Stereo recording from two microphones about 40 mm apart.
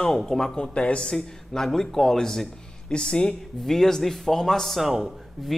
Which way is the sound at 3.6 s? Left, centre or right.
Centre.